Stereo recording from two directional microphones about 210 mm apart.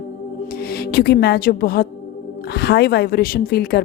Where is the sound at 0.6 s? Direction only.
45° left (ahead or behind).